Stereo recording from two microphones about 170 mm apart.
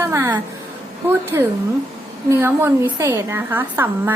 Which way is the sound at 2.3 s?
15° right (ahead or behind).